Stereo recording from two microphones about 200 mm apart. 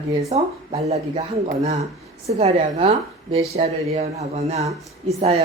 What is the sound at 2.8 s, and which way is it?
Speech, 30° right (ahead or behind).